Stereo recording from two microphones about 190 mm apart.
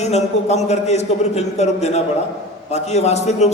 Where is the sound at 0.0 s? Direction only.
35° left (ahead or behind).